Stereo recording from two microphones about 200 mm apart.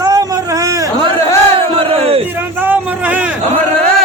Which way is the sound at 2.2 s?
10° right (ahead or behind).